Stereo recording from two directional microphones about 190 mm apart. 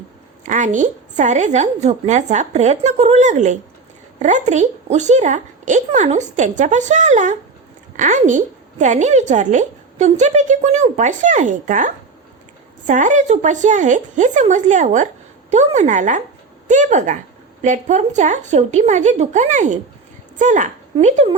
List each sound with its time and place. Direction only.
0.4 s a woman's voice: 40° right (ahead or behind)